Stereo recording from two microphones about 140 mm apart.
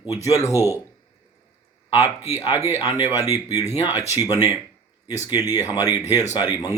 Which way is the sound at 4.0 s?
25° left (ahead or behind).